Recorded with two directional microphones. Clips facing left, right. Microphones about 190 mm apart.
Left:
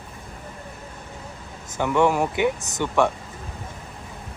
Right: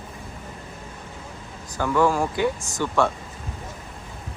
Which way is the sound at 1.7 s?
20° left (ahead or behind).